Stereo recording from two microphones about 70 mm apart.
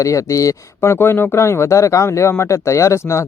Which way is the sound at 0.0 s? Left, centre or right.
Left.